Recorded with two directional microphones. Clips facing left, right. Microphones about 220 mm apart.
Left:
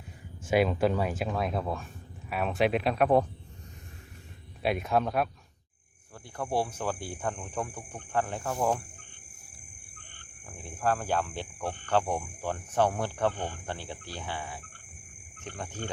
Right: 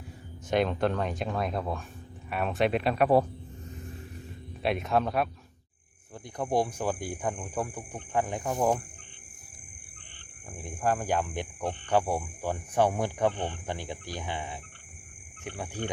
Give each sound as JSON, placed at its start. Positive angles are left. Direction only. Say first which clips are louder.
{"t": 0.5, "sound": "speech", "louder": "left 1 dB", "side_deg": 5}
{"t": 4.6, "sound": "speech", "louder": "even", "side_deg": 0}
{"t": 6.3, "sound": "speech", "louder": "right 3 dB", "side_deg": -15}
{"t": 10.5, "sound": "speech", "louder": "right 1 dB", "side_deg": -15}